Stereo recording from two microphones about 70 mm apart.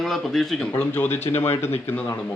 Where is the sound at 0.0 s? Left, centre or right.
Centre.